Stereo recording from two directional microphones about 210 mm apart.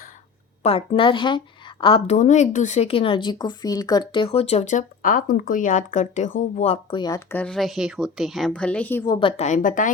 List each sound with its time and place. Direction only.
0.6 s a woman's voice: 25° left (ahead or behind)
7.0 s speech: 15° left (ahead or behind)
9.0 s a woman's voice: 25° left (ahead or behind); by 9.9 s 40° left (ahead or behind)